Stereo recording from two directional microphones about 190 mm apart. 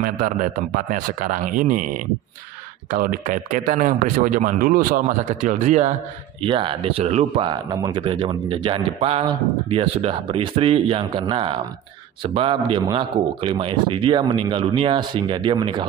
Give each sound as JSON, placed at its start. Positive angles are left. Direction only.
{"t": 0.0, "sound": "speech", "side_deg": -45}
{"t": 6.4, "sound": "a man's voice", "side_deg": -25}